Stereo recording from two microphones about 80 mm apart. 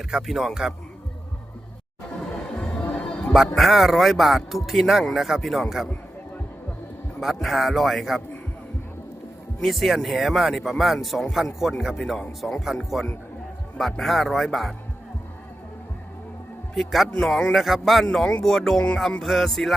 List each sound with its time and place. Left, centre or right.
0.1 s speech: centre
2.3 s music: centre
2.6 s music: left
3.3 s speech: centre
7.2 s speech: centre
9.6 s speech: centre
16.7 s speech: centre